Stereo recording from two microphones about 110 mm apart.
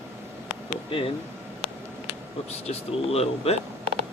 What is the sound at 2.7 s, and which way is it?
Speech, 65° left (ahead or behind).